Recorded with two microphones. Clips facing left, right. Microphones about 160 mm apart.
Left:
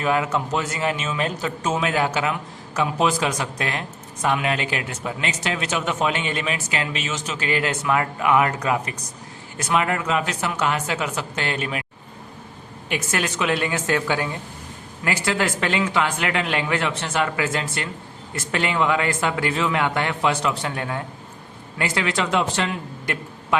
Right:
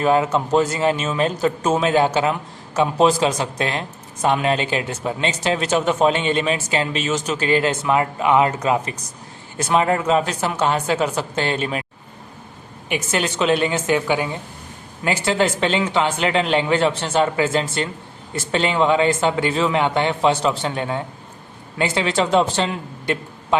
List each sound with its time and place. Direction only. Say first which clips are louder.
0.0 s speech: right 5 dB; 30° right (ahead or behind)
12.9 s speech: right 3 dB; 25° right (ahead or behind)